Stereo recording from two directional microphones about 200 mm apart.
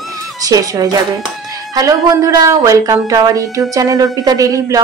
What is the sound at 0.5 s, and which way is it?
A woman's voice, 15° right (ahead or behind).